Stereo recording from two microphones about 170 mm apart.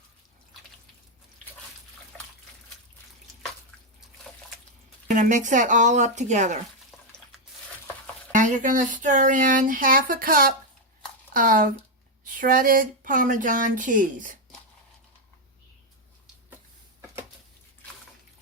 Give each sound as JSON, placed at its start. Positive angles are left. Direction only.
{"t": 5.0, "sound": "speech", "side_deg": -45}
{"t": 8.3, "sound": "speech", "side_deg": -50}